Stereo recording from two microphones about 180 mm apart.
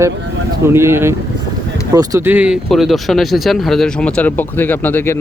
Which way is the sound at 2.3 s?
5° right (ahead or behind).